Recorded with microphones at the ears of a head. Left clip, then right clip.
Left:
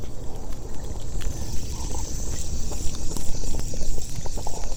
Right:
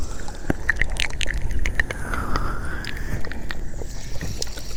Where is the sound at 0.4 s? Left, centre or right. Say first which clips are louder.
Right 17 dB; right.